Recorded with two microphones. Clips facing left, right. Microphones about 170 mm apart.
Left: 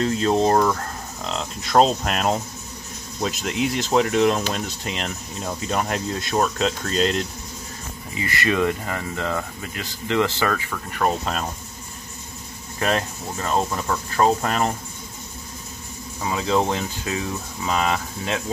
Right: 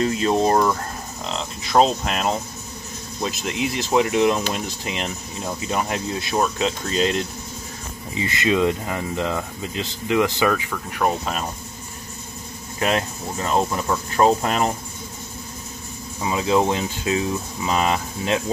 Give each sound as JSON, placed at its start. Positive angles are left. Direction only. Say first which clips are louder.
{"t": 0.2, "sound": "a sound", "louder": "left 1 dB", "side_deg": -5}
{"t": 3.2, "sound": "speech", "louder": "left 1 dB", "side_deg": 0}
{"t": 8.2, "sound": "speech", "louder": "right 2 dB", "side_deg": -20}
{"t": 10.7, "sound": "speech", "louder": "right 1 dB", "side_deg": -5}
{"t": 12.8, "sound": "speech", "louder": "right 1 dB", "side_deg": -10}
{"t": 16.2, "sound": "speech", "louder": "right 2 dB", "side_deg": -15}